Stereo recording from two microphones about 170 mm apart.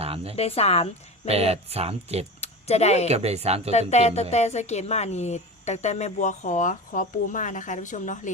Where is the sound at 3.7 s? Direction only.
40° left (ahead or behind).